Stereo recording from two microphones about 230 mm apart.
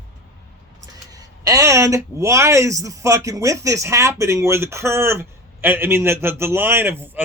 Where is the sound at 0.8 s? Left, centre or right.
Centre.